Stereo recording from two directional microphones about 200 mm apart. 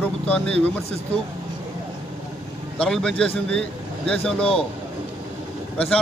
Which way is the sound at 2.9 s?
5° left (ahead or behind).